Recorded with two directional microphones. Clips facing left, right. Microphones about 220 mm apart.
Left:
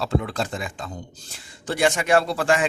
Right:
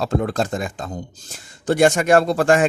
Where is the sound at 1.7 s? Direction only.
45° right (ahead or behind).